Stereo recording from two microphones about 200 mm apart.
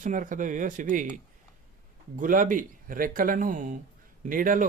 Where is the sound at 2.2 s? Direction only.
40° right (ahead or behind).